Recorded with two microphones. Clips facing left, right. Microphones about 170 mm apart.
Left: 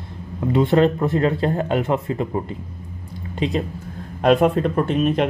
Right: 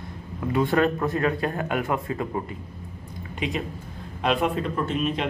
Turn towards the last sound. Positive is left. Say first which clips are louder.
# left 7 dB
turn(degrees=50)  # may be behind; listen again after turning